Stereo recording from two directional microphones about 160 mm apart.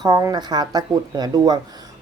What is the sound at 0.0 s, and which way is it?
A woman's voice, 20° right (ahead or behind).